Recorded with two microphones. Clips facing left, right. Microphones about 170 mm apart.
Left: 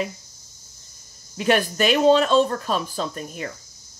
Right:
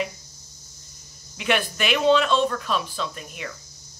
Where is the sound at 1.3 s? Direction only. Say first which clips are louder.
Left 4 dB; 40° left (ahead or behind).